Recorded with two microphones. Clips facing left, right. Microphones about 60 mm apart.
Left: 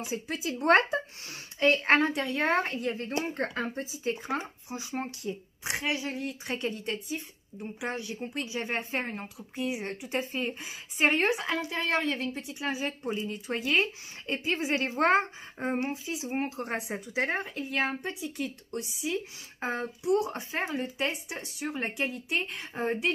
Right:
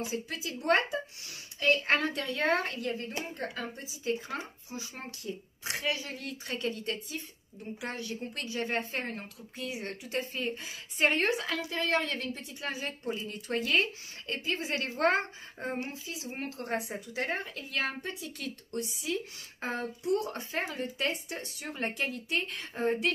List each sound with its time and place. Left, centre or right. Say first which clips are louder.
0.0 s speech: left 2 dB; left
0.7 s speech: left 4 dB; left
3.3 s speech: left 6 dB; left
4.0 s a woman's voice: left 1 dB; left; by 23.1 s centre